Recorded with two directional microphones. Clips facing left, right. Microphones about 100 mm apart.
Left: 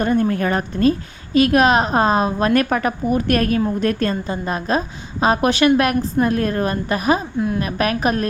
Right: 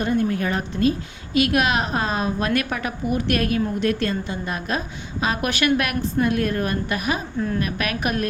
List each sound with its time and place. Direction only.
0.0 s a woman's voice: 50° left (ahead or behind)
7.3 s a woman's voice: 15° left (ahead or behind)
7.6 s a woman's voice: 35° left (ahead or behind)